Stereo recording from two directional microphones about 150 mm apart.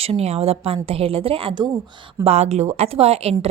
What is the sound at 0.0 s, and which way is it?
Speech, 40° right (ahead or behind).